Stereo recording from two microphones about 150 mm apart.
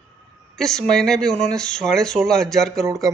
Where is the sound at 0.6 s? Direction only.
5° left (ahead or behind).